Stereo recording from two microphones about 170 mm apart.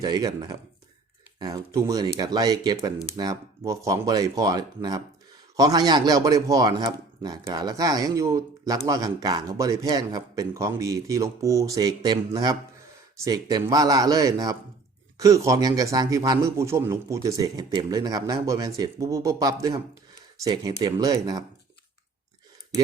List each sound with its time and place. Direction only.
0.0 s a man's voice: 25° right (ahead or behind)